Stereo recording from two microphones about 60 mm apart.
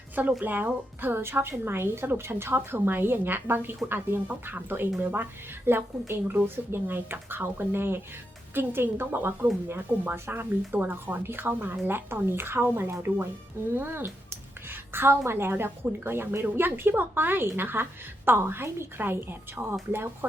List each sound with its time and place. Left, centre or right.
0.2 s speech: right